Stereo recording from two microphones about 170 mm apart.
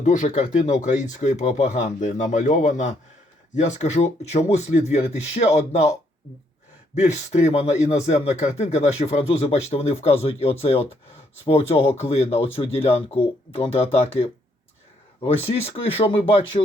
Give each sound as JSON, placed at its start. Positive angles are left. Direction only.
{"t": 0.0, "sound": "speech", "side_deg": 45}
{"t": 7.1, "sound": "speech", "side_deg": 40}